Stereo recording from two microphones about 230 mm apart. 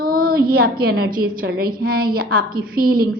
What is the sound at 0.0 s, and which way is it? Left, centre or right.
A woman's voice, right.